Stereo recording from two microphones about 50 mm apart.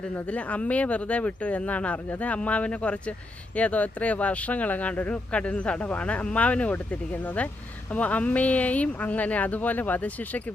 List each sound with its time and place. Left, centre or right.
0.3 s speech: left